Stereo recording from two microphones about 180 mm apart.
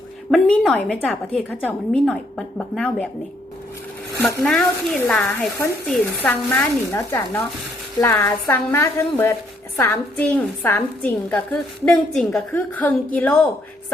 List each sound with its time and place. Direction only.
0.3 s a woman's voice: centre (ahead or behind)
4.2 s a woman's voice: 5° left (ahead or behind)